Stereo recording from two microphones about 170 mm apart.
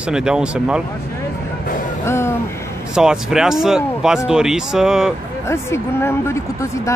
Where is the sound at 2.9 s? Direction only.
5° right (ahead or behind).